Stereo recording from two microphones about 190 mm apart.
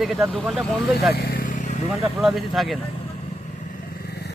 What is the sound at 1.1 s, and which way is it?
Vehicle, 55° left (ahead or behind).